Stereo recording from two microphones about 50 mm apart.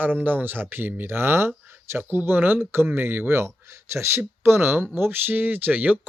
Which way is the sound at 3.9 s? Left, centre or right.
Right.